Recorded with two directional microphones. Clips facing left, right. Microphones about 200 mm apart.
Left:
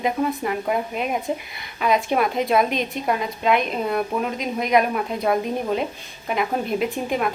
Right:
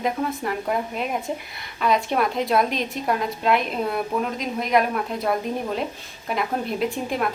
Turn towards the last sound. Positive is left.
turn(degrees=0)  # may be behind; listen again after turning